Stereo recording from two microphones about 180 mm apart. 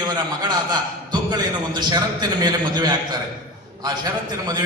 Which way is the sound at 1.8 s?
25° right (ahead or behind).